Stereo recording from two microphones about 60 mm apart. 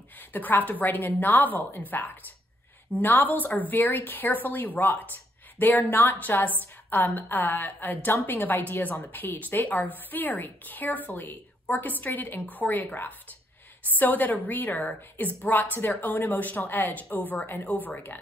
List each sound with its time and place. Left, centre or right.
0.2 s a woman's voice: left